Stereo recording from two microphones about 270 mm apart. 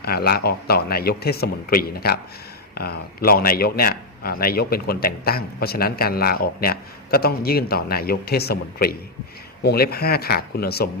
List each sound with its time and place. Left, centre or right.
0.0 s a man's voice: left